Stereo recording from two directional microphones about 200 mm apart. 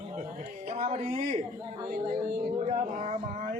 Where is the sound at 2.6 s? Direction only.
40° right (ahead or behind).